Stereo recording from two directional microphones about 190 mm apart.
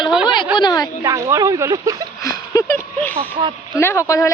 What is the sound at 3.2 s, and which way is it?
Speech, 25° right (ahead or behind).